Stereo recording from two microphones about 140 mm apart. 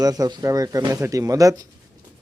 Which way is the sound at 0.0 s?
25° right (ahead or behind).